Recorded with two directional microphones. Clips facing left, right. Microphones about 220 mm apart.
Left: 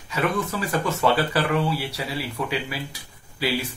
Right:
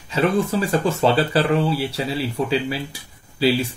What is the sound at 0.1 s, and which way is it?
Speech, 30° right (ahead or behind).